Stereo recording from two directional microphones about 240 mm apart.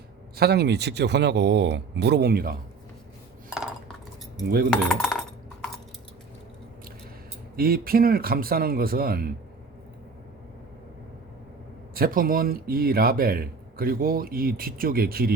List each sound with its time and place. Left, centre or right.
0.3 s a man's voice: right
4.7 s cutlery: centre
7.5 s a man's voice: right
11.9 s a man's voice: right